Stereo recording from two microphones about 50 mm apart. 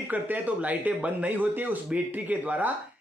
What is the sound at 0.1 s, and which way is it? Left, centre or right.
Speech, right.